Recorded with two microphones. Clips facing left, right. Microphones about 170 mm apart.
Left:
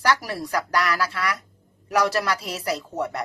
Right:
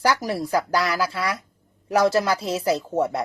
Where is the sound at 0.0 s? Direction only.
25° right (ahead or behind).